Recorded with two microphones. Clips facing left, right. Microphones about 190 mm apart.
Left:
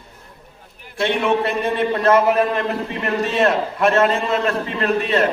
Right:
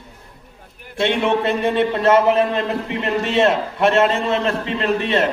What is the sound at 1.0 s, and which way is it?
A man's voice, 25° right (ahead or behind).